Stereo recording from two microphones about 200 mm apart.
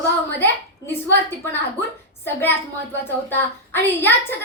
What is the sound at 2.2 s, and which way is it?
A woman's voice, 10° left (ahead or behind).